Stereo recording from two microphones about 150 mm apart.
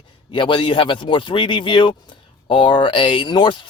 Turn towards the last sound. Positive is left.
turn(degrees=30)  # may be behind; listen again after turning